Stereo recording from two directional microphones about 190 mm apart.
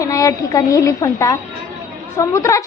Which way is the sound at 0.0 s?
15° left (ahead or behind).